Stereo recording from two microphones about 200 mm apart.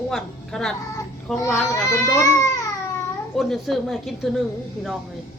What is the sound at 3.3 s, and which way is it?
Speech, centre (ahead or behind).